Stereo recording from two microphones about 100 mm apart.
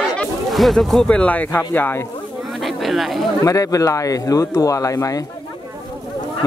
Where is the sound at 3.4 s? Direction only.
35° left (ahead or behind).